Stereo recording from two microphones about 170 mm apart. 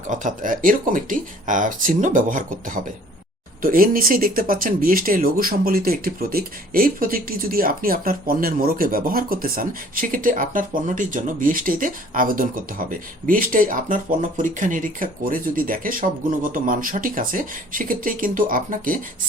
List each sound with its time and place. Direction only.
0.1 s speech: 50° right (ahead or behind)